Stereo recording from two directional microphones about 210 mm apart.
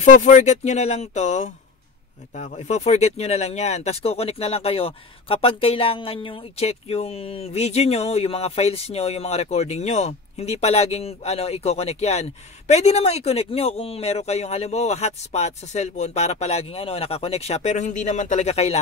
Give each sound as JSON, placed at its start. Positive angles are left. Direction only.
{"t": 0.0, "sound": "speech", "side_deg": 35}